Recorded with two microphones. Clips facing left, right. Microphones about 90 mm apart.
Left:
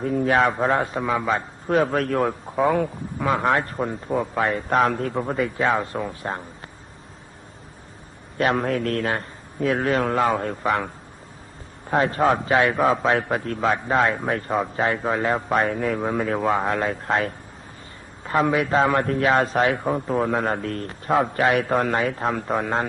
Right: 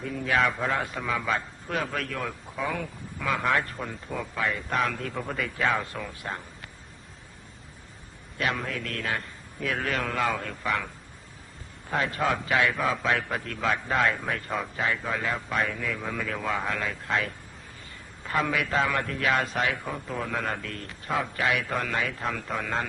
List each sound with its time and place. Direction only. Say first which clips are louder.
0.0 s a man's voice: left 6 dB; 40° left (ahead or behind); by 2.9 s 55° left (ahead or behind)
3.2 s a man's voice: left 5 dB; 35° left (ahead or behind)
5.1 s a man's voice: left 8 dB; 25° left (ahead or behind)
6.2 s a man's voice: left 3 dB; 35° left (ahead or behind)
8.4 s a man's voice: left 8 dB; 40° left (ahead or behind)
9.7 s a man's voice: left 7 dB; 25° left (ahead or behind)
10.5 s speech: left 6 dB; 45° left (ahead or behind)
11.9 s a man's voice: left 7 dB; 40° left (ahead or behind)
12.7 s a man's voice: left 7 dB; 50° left (ahead or behind)
13.7 s a man's voice: left 5 dB; 20° left (ahead or behind); by 17.3 s 35° left (ahead or behind)
18.2 s a sound: left 6 dB; 30° left (ahead or behind)
18.4 s a man's voice: left 8 dB; 30° left (ahead or behind)
19.7 s speech: left 10 dB; 55° left (ahead or behind)
20.3 s a man's voice: left 8 dB; 35° left (ahead or behind)